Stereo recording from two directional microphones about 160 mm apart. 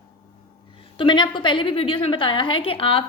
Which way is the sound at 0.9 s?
30° left (ahead or behind).